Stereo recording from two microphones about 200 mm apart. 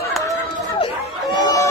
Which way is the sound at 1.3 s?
15° left (ahead or behind).